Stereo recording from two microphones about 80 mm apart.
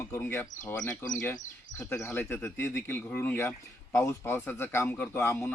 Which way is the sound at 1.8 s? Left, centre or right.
Left.